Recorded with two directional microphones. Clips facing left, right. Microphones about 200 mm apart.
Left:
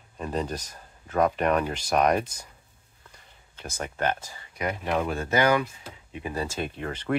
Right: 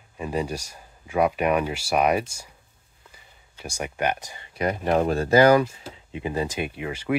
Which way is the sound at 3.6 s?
10° right (ahead or behind).